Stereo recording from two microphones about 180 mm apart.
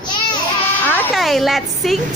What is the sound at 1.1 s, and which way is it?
Speech, centre (ahead or behind).